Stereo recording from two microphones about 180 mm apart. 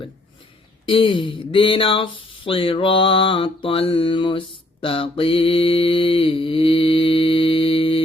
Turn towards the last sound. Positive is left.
turn(degrees=30)  # may be behind; listen again after turning